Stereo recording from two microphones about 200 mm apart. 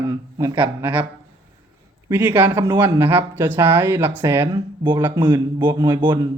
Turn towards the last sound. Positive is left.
turn(degrees=-15)  # may be behind; listen again after turning